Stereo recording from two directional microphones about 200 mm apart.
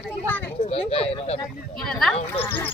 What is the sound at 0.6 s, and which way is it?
Speech, 30° left (ahead or behind).